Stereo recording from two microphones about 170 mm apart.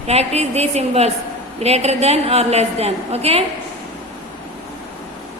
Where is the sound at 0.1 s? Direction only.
40° right (ahead or behind).